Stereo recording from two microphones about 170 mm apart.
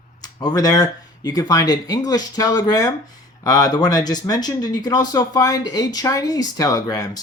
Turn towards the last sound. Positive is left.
turn(degrees=20)  # may be behind; listen again after turning